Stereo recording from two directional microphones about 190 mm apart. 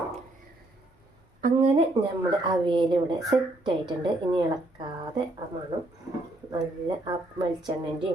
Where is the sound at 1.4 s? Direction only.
40° right (ahead or behind).